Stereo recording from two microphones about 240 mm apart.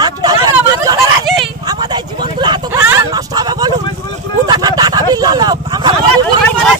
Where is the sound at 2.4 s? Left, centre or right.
Centre.